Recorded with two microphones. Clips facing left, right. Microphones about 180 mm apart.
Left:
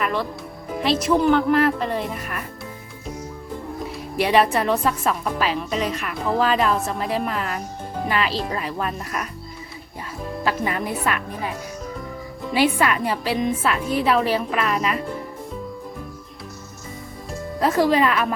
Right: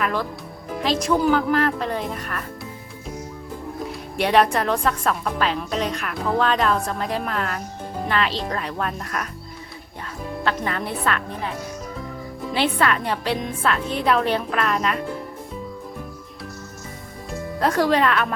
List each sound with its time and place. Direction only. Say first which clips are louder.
0.0 s a woman's voice: even; centre (ahead or behind)
4.2 s a woman's voice: even; centre (ahead or behind)
10.4 s a woman's voice: left 1 dB; 10° left (ahead or behind)
12.5 s a woman's voice: left 2 dB; 10° left (ahead or behind)
17.6 s a woman's voice: left 1 dB; centre (ahead or behind)